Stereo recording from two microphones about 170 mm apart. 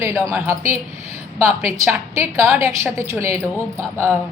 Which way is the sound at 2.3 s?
15° right (ahead or behind).